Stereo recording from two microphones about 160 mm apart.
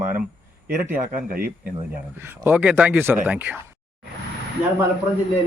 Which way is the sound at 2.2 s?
15° right (ahead or behind).